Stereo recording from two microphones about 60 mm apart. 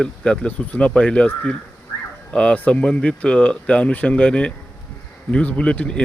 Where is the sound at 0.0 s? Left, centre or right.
Left.